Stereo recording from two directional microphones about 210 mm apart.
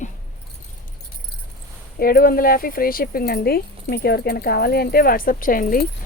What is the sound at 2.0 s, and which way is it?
Speech, 45° left (ahead or behind).